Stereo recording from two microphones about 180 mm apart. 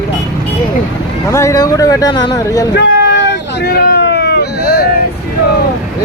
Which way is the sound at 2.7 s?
70° left (ahead or behind).